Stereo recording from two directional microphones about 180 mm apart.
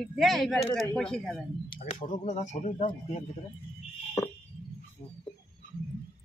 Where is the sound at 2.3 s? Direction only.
40° left (ahead or behind).